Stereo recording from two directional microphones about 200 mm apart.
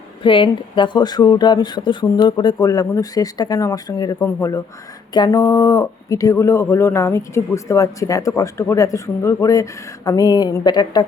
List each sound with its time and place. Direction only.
0.2 s speech: 25° left (ahead or behind)